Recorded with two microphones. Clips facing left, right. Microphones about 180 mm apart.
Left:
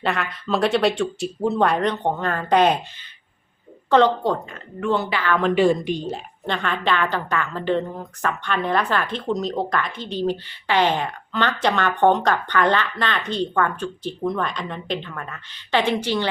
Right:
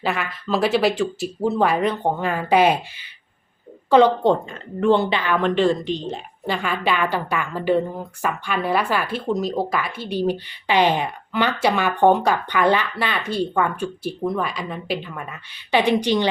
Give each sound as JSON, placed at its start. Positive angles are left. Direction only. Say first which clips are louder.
{"t": 0.0, "sound": "a woman's voice", "louder": "even", "side_deg": 0}
{"t": 4.8, "sound": "speech", "louder": "right 5 dB", "side_deg": -30}
{"t": 5.4, "sound": "a woman's voice", "louder": "left 2 dB", "side_deg": 5}
{"t": 6.5, "sound": "a woman's voice", "louder": "even", "side_deg": -5}